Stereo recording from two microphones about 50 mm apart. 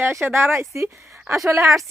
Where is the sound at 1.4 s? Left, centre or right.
Right.